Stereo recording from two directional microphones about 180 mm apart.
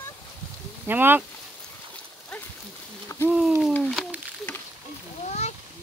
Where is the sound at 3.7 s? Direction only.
5° left (ahead or behind).